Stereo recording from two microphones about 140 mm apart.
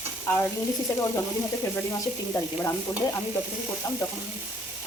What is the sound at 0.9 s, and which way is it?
Speech, 20° left (ahead or behind).